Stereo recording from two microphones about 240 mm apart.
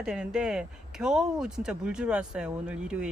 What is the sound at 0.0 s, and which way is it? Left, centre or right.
Speech, centre.